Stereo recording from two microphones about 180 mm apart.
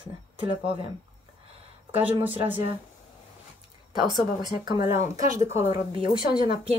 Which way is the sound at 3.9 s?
25° right (ahead or behind).